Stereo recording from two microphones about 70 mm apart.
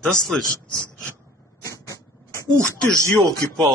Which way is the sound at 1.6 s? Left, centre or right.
Left.